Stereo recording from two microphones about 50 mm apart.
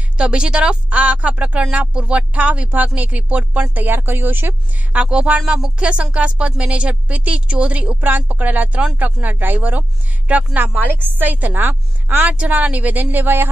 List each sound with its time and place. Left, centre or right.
0.2 s a woman's voice: centre; by 4.6 s right
4.9 s a woman's voice: right